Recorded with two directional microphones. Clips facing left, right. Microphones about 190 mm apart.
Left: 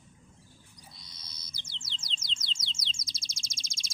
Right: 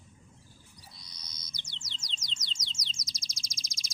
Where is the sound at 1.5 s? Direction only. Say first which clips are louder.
Left 2 dB; 30° left (ahead or behind).